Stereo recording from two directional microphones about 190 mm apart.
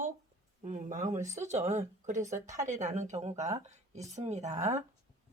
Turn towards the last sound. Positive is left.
turn(degrees=-35)  # may be behind; listen again after turning